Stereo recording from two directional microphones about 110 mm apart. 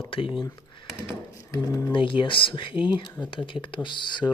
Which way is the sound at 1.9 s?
50° left (ahead or behind).